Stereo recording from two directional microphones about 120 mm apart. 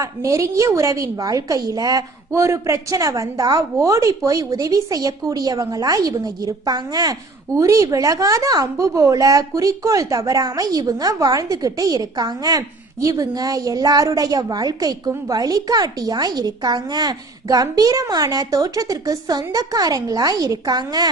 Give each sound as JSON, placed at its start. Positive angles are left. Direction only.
{"t": 0.0, "sound": "a woman's voice", "side_deg": -25}